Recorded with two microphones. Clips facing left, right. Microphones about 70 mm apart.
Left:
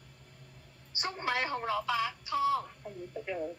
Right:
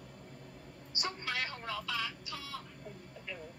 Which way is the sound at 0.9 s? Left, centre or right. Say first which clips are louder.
Left 5 dB; left.